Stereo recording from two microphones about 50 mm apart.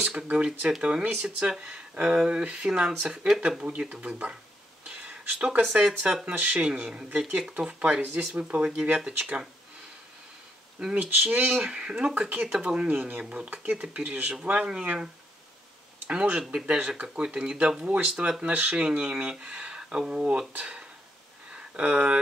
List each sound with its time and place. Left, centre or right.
0.0 s speech: right
3.4 s speech: right
8.1 s speech: centre
8.4 s speech: right
9.0 s speech: centre
10.8 s speech: centre
11.2 s speech: right
11.5 s speech: centre
12.1 s speech: right
12.4 s speech: centre
16.1 s speech: centre
21.5 s a sound: right